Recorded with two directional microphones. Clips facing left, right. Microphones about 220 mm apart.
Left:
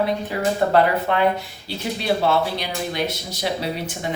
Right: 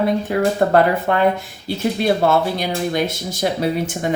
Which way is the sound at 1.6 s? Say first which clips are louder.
Right 6 dB; 50° right (ahead or behind).